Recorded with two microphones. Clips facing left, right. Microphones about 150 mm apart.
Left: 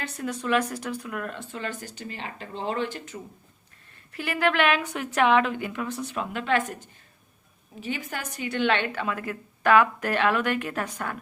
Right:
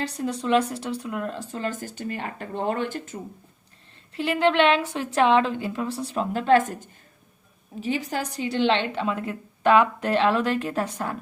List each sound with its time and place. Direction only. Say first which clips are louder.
0.2 s a woman's voice: right 3 dB; 30° right (ahead or behind)
1.4 s speech: right 4 dB; 40° right (ahead or behind)
4.1 s a woman's voice: right 4 dB; 25° right (ahead or behind)